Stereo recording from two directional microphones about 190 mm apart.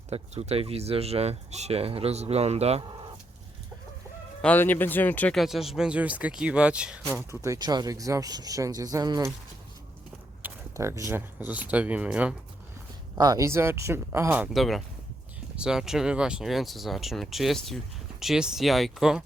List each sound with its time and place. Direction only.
0.1 s speech: 35° right (ahead or behind)
4.4 s speech: 10° left (ahead or behind); by 9.3 s 20° right (ahead or behind)
10.4 s speech: 15° right (ahead or behind)
13.1 s speech: 20° right (ahead or behind); by 19.2 s centre (ahead or behind)